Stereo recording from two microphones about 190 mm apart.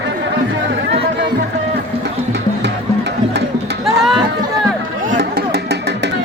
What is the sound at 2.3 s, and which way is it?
Music, 60° right (ahead or behind).